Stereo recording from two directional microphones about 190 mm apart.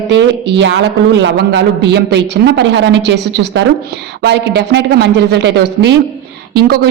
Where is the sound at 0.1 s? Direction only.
70° right (ahead or behind).